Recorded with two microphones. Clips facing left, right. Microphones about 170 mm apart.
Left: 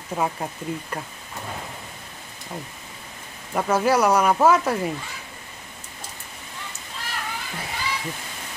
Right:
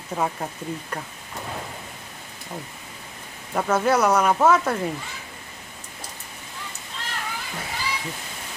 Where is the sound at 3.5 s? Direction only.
5° left (ahead or behind).